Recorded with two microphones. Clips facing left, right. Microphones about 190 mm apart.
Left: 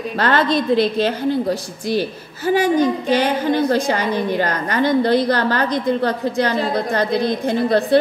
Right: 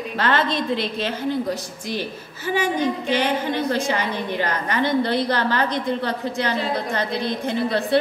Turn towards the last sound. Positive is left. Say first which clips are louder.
# left 5 dB
turn(degrees=40)  # may be behind; listen again after turning